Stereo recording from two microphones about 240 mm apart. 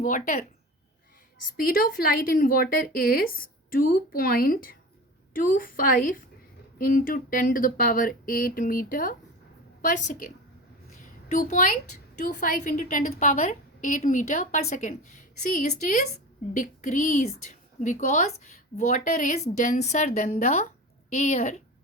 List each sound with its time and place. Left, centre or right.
0.0 s a woman's voice: left
1.5 s a woman's voice: left
11.0 s a sound: left
12.2 s a woman's voice: left